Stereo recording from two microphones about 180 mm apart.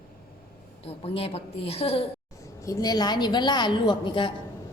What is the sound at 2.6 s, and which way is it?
A woman's voice, 20° left (ahead or behind).